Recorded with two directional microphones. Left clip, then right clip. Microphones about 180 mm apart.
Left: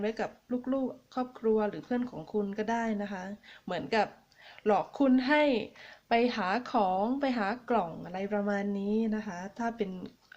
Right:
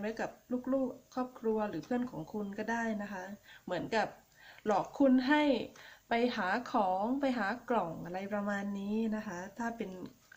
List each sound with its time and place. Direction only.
0.0 s a woman's voice: 25° left (ahead or behind)